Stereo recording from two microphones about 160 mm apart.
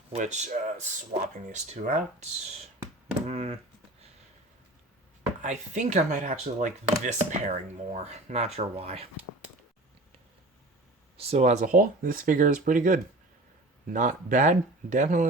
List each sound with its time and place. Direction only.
0.1 s speech: 45° right (ahead or behind)
5.4 s speech: 50° right (ahead or behind)
11.2 s speech: 40° right (ahead or behind)